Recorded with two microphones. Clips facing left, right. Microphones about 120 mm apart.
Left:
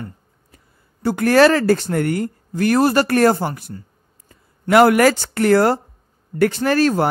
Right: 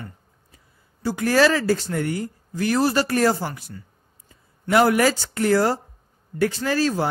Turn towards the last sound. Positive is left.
turn(degrees=60)  # may be behind; listen again after turning